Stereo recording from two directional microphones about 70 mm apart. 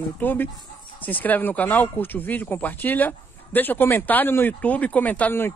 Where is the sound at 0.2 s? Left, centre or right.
Left.